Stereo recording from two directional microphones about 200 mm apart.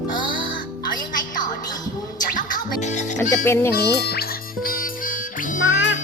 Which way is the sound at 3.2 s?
15° left (ahead or behind).